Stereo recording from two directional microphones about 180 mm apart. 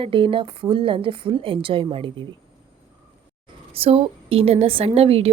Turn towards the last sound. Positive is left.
turn(degrees=-35)  # may be behind; listen again after turning